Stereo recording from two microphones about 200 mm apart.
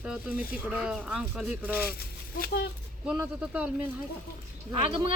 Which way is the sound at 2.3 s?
50° left (ahead or behind).